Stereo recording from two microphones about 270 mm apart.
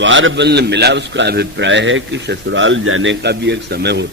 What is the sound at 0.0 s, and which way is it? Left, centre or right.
A man's voice, right.